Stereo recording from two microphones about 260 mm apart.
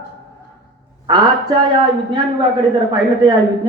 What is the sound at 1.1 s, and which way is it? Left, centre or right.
Speech, centre.